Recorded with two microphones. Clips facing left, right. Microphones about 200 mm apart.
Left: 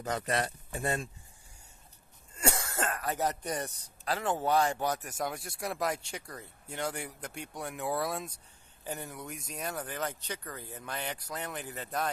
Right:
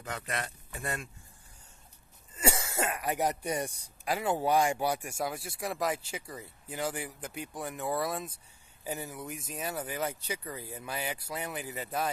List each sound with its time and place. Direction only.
0.0 s speech: 35° left (ahead or behind)
2.3 s speech: 5° right (ahead or behind)